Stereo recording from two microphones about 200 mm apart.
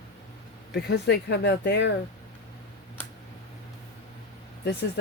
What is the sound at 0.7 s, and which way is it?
Speech, 60° left (ahead or behind).